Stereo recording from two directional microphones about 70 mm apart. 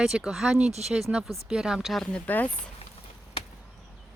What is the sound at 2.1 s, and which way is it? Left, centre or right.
Speech, left.